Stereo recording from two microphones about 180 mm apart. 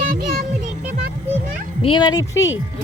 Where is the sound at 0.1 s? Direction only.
55° right (ahead or behind).